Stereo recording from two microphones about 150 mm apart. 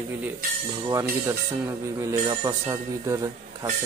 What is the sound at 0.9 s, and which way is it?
A man's voice, 20° right (ahead or behind).